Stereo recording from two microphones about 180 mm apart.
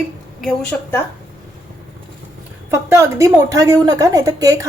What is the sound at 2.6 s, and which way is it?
A woman's voice, 15° right (ahead or behind).